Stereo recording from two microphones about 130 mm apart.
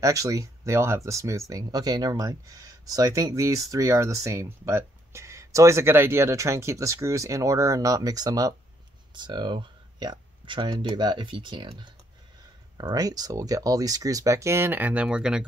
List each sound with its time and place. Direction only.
0.0 s speech: 25° right (ahead or behind); by 15.4 s 5° right (ahead or behind)